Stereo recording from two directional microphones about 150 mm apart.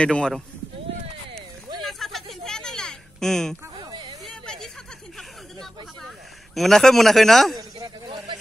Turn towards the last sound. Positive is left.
turn(degrees=0)  # may be behind; listen again after turning